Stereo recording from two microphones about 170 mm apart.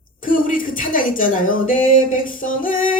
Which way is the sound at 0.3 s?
55° left (ahead or behind).